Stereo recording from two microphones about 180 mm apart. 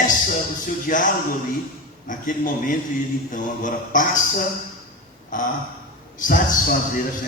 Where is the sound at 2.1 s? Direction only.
45° left (ahead or behind).